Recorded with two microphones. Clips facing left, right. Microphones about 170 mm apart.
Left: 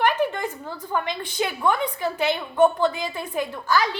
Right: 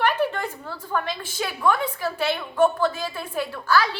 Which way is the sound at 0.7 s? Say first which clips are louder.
Even; 15° left (ahead or behind).